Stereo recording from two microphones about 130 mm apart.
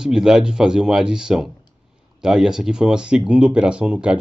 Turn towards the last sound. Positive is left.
turn(degrees=-10)  # may be behind; listen again after turning